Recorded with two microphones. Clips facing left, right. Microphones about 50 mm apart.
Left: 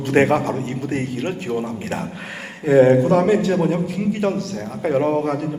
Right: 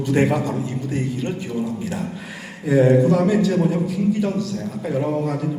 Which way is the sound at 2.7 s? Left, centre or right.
Left.